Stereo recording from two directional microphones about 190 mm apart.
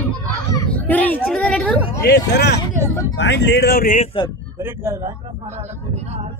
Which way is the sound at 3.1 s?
65° left (ahead or behind).